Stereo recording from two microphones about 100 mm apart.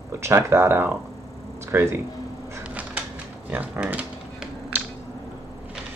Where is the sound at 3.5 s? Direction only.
15° right (ahead or behind).